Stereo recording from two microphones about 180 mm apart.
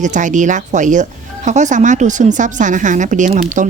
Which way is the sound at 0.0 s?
45° right (ahead or behind).